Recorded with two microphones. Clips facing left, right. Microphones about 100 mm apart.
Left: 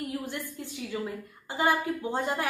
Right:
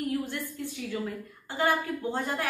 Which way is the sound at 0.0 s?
15° left (ahead or behind).